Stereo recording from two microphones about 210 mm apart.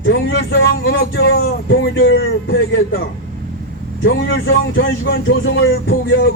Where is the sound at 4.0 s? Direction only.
60° left (ahead or behind).